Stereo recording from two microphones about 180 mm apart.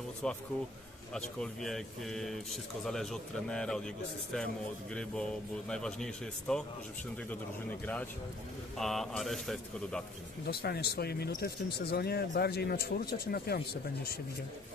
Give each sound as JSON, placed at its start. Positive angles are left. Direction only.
{"t": 0.2, "sound": "speech", "side_deg": 5}
{"t": 1.4, "sound": "speech", "side_deg": 0}
{"t": 5.7, "sound": "speech", "side_deg": 5}
{"t": 7.8, "sound": "speech", "side_deg": 10}
{"t": 10.4, "sound": "speech", "side_deg": 60}